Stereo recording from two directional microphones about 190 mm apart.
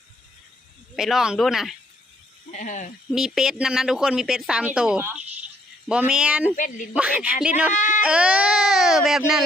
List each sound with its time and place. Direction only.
0.9 s speech: centre (ahead or behind)
2.5 s speech: 40° left (ahead or behind)
3.1 s a woman's voice: centre (ahead or behind)
7.7 s sheep: 40° left (ahead or behind)
8.0 s speech: 5° right (ahead or behind)